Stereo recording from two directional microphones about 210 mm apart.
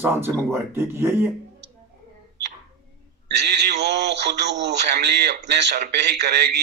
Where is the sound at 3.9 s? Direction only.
55° right (ahead or behind).